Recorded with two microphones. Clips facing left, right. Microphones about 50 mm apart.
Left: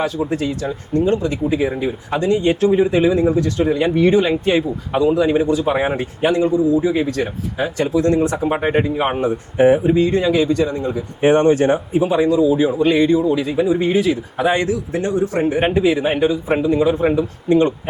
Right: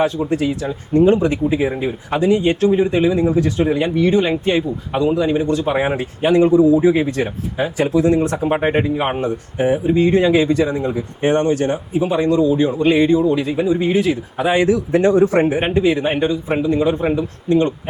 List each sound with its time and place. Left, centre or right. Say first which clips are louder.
0.2 s speech: right 1 dB; centre
2.5 s speech: even; centre
3.9 s speech: left 2 dB; centre
4.2 s speech: left 1 dB; centre
6.3 s speech: right 5 dB; centre
9.6 s speech: left 5 dB; centre
10.0 s speech: right 2 dB; centre
11.2 s speech: left 3 dB; centre
11.4 s speech: left 4 dB; left
12.0 s speech: even; centre
12.8 s speech: right 2 dB; centre
14.7 s a man's voice: right 6 dB; right
15.6 s speech: even; centre
17.5 s speech: left 1 dB; centre